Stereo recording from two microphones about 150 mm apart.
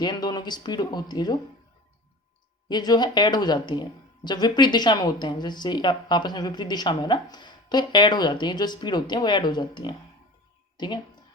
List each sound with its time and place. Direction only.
0.0 s speech: 25° left (ahead or behind)
2.6 s speech: 25° left (ahead or behind)